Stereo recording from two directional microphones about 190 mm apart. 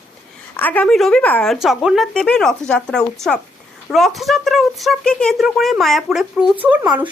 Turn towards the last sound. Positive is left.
turn(degrees=-10)  # may be behind; listen again after turning